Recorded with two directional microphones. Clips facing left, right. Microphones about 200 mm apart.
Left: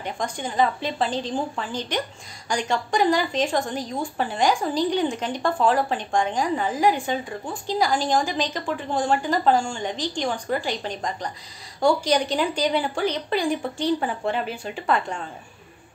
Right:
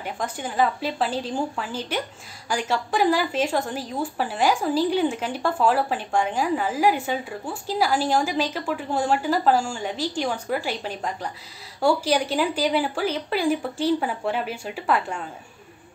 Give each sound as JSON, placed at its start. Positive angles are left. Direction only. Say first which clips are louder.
{"t": 0.0, "sound": "a woman's voice", "louder": "left 1 dB", "side_deg": -5}